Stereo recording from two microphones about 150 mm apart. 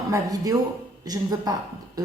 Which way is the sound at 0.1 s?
25° right (ahead or behind).